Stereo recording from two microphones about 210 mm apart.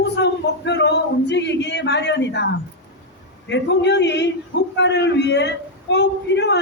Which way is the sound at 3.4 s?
55° left (ahead or behind).